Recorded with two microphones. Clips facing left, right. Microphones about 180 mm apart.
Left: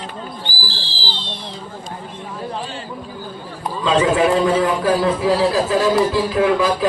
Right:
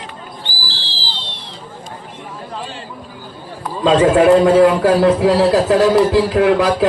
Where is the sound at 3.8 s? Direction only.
55° right (ahead or behind).